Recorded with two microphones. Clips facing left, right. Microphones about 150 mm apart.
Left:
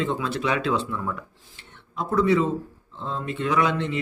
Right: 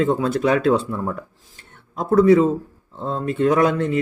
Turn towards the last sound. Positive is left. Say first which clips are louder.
# right 6 dB
turn(degrees=-45)  # may be behind; listen again after turning